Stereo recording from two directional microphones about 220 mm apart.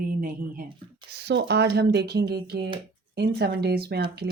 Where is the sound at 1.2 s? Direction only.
50° right (ahead or behind).